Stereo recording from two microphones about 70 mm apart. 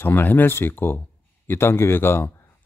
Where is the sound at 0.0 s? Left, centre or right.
Left.